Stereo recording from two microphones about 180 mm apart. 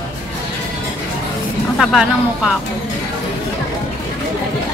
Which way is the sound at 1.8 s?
5° right (ahead or behind).